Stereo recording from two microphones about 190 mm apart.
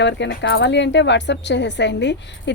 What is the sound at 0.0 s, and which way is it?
A woman's voice, 65° left (ahead or behind).